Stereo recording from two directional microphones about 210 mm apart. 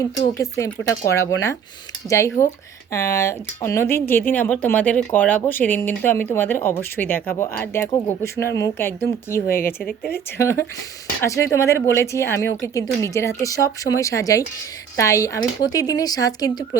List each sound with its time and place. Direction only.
0.3 s speech: 15° left (ahead or behind)